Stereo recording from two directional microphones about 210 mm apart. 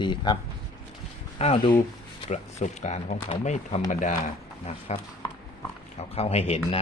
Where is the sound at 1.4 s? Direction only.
25° left (ahead or behind).